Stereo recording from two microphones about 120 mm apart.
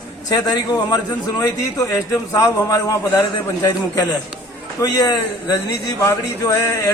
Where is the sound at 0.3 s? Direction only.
35° left (ahead or behind).